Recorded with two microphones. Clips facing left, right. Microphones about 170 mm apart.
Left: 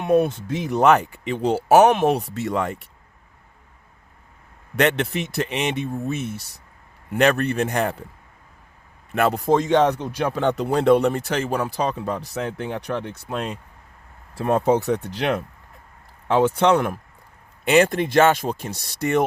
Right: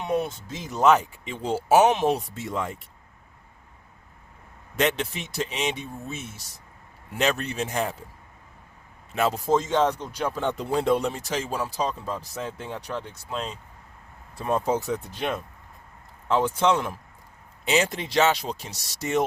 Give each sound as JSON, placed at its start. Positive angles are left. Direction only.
{"t": 0.0, "sound": "speech", "side_deg": 55}
{"t": 4.8, "sound": "speech", "side_deg": 65}
{"t": 9.1, "sound": "speech", "side_deg": 60}
{"t": 16.3, "sound": "speech", "side_deg": 65}